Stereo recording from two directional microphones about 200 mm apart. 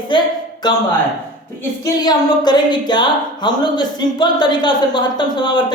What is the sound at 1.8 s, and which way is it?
A woman's voice, 20° left (ahead or behind).